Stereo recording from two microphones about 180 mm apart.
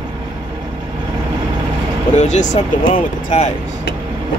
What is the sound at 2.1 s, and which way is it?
Speech, 40° left (ahead or behind).